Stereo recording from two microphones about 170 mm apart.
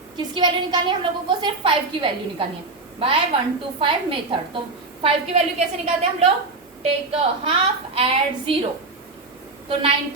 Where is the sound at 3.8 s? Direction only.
30° right (ahead or behind).